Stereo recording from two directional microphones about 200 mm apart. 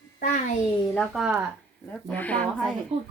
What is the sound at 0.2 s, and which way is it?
Speech, 40° left (ahead or behind).